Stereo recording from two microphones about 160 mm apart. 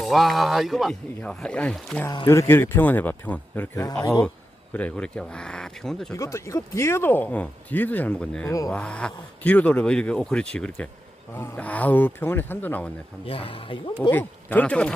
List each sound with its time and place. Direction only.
0.0 s speech: centre (ahead or behind)
2.2 s speech: 15° left (ahead or behind)
6.1 s speech: 20° left (ahead or behind)
13.2 s speech: 35° left (ahead or behind)
14.1 s speech: 10° left (ahead or behind)